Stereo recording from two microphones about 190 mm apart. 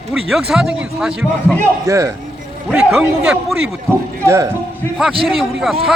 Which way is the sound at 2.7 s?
5° right (ahead or behind).